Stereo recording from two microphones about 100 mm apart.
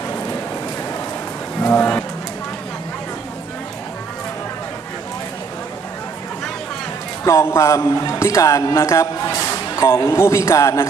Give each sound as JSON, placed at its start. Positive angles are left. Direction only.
{"t": 1.6, "sound": "speech", "side_deg": 20}
{"t": 7.3, "sound": "a man's voice", "side_deg": 25}